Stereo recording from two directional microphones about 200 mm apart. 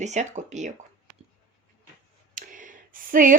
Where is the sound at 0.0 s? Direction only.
35° right (ahead or behind).